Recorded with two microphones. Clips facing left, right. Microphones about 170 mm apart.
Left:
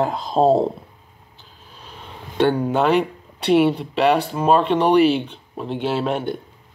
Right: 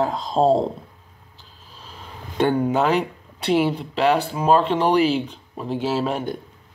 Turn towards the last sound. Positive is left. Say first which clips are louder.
# left 1 dB
turn(degrees=-5)  # may be behind; listen again after turning